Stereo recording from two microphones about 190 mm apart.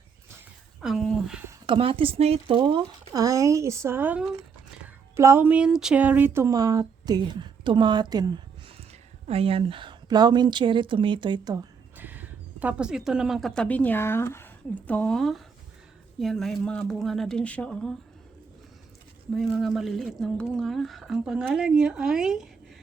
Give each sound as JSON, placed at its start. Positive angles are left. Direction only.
{"t": 0.8, "sound": "speech", "side_deg": 0}
{"t": 1.6, "sound": "speech", "side_deg": -30}
{"t": 5.1, "sound": "speech", "side_deg": -15}
{"t": 9.2, "sound": "speech", "side_deg": -30}
{"t": 11.9, "sound": "speech", "side_deg": -10}
{"t": 19.3, "sound": "speech", "side_deg": 0}